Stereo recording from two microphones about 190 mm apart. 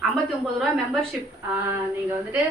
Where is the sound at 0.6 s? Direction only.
Centre (ahead or behind).